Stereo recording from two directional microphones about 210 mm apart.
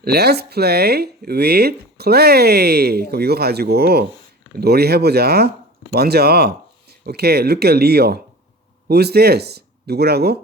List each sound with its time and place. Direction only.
0.0 s speech: 50° right (ahead or behind)